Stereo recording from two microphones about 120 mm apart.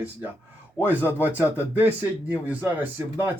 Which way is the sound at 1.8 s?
15° right (ahead or behind).